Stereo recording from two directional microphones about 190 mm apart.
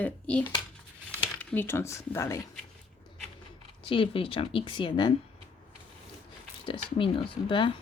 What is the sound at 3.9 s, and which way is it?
Speech, 30° left (ahead or behind).